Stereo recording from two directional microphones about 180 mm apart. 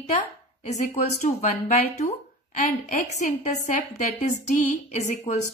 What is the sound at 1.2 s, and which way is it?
Speech, 40° left (ahead or behind).